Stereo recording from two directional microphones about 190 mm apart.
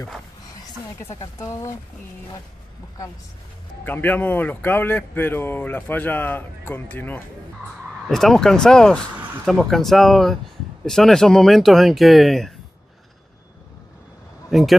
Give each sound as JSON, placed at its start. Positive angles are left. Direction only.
{"t": 0.9, "sound": "speech", "side_deg": 15}
{"t": 3.8, "sound": "speech", "side_deg": 10}
{"t": 14.5, "sound": "speech", "side_deg": 0}